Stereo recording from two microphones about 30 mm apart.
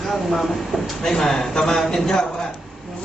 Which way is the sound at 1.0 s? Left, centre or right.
Centre.